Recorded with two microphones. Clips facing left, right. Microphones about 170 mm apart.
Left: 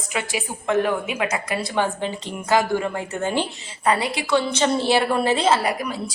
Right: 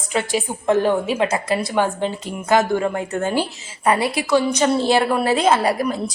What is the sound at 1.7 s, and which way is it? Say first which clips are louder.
Speech: right 3 dB; 10° right (ahead or behind).